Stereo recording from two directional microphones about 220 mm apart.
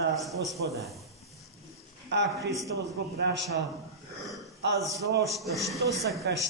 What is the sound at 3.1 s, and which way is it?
Speech, 50° right (ahead or behind).